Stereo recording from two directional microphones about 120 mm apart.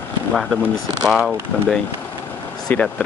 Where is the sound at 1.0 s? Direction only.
Centre (ahead or behind).